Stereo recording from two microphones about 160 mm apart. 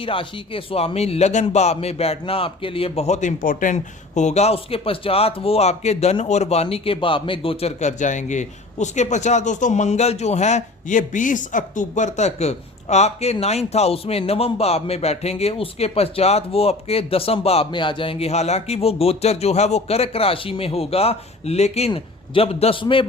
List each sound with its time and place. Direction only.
0.0 s a man's voice: 35° left (ahead or behind)